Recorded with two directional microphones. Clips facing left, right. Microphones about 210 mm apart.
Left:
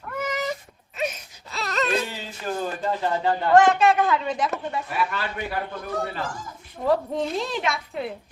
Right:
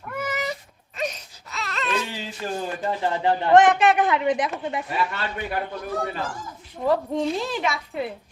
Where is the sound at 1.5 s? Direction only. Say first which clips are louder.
Left 4 dB; 35° left (ahead or behind).